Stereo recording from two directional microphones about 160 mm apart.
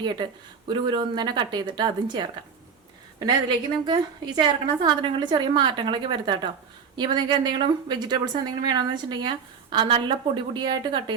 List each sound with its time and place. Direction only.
0.0 s a woman's voice: 30° right (ahead or behind)
3.8 s a woman's voice: 30° right (ahead or behind)